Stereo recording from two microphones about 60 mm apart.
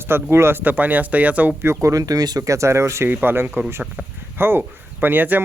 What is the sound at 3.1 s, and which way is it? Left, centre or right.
Speech, right.